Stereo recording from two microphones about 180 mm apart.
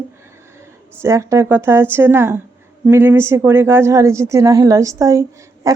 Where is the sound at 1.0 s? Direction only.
15° right (ahead or behind).